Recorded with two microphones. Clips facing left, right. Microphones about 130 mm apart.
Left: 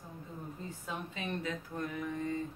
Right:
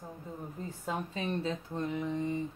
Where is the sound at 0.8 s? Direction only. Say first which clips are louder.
Right 6 dB; 35° right (ahead or behind); by 2.5 s 20° right (ahead or behind).